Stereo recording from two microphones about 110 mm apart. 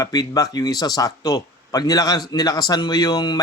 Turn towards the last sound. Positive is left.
turn(degrees=35)  # may be behind; listen again after turning